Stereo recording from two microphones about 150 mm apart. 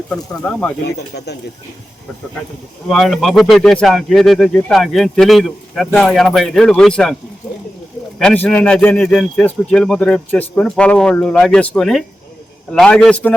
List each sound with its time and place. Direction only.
0.1 s speech: 5° left (ahead or behind)
0.9 s speech: 90° left
2.9 s speech: centre (ahead or behind)
8.2 s speech: 5° left (ahead or behind)